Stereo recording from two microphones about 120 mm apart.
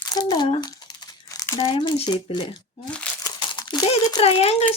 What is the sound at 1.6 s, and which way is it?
Speech, 45° left (ahead or behind).